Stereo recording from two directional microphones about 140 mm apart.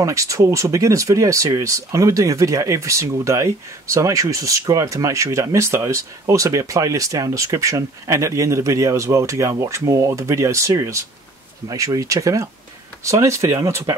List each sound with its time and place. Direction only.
0.0 s speech: 20° right (ahead or behind)